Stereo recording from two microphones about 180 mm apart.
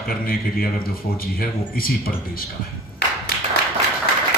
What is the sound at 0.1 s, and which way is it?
A man's voice, 55° left (ahead or behind).